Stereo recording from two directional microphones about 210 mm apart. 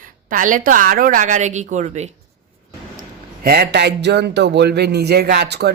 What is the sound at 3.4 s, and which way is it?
Speech, 50° right (ahead or behind).